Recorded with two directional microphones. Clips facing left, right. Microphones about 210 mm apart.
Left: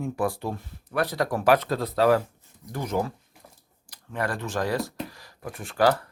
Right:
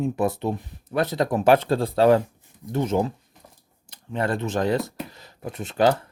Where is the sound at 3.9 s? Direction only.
25° right (ahead or behind).